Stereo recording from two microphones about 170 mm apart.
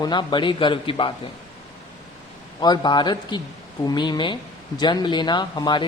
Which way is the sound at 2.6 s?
25° left (ahead or behind).